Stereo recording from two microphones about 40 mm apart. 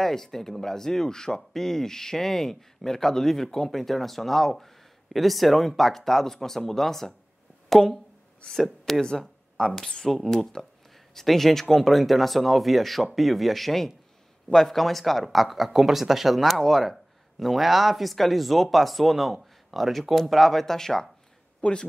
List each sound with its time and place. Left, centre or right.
0.0 s speech: centre
9.2 s a sound: centre
10.0 s speech: centre
21.6 s speech: left